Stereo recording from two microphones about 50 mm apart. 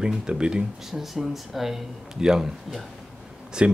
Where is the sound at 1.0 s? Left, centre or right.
Centre.